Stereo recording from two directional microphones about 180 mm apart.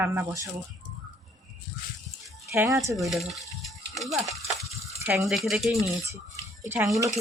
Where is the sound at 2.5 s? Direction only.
15° right (ahead or behind).